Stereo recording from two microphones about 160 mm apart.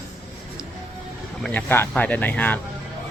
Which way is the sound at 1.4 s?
10° left (ahead or behind).